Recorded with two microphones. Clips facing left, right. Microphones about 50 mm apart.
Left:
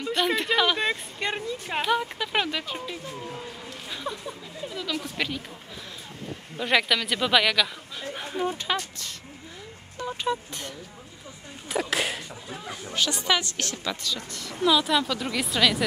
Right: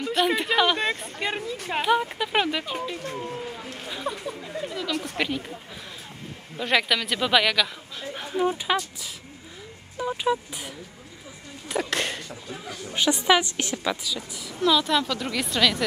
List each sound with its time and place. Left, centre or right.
0.1 s a woman's voice: centre
6.5 s a woman's voice: centre
8.1 s a sound: centre
8.7 s speech: centre
9.9 s speech: centre
11.7 s a woman's voice: centre
12.9 s a woman's voice: centre
14.0 s speech: centre
14.6 s a woman's voice: centre